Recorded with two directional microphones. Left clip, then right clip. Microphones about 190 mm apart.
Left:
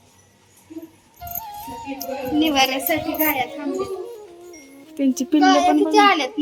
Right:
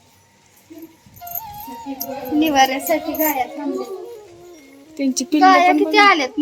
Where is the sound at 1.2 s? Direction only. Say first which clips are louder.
Even; centre (ahead or behind).